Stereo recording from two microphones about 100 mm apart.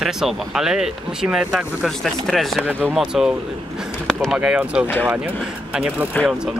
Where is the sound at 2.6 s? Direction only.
15° right (ahead or behind).